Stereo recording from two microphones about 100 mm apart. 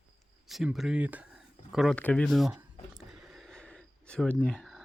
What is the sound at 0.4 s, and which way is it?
Speech, 5° right (ahead or behind).